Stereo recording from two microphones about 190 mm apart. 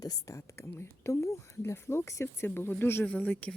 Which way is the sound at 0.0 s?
20° left (ahead or behind).